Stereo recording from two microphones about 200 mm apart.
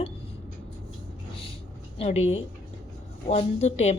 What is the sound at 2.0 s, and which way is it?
Speech, 30° left (ahead or behind).